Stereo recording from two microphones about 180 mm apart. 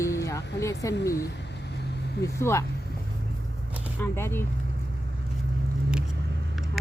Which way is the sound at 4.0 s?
10° left (ahead or behind).